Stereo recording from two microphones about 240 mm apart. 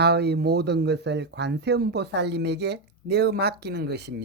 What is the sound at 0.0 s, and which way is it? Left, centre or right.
Speech, right.